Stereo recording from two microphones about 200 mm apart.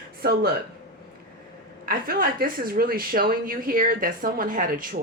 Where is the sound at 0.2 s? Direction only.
50° right (ahead or behind).